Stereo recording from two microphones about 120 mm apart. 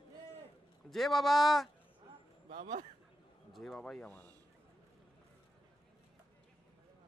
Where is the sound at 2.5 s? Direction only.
90° right.